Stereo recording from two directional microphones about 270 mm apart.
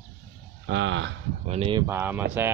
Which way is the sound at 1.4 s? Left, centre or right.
Right.